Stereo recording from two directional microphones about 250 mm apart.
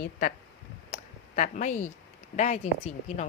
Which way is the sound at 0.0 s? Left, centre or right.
Left.